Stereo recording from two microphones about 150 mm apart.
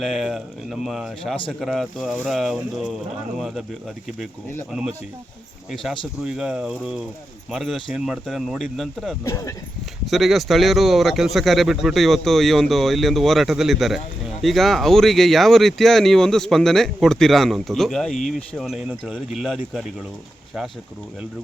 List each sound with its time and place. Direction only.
0.0 s speech: centre (ahead or behind)
5.7 s speech: centre (ahead or behind)
9.2 s speech: 20° left (ahead or behind)
10.1 s speech: centre (ahead or behind)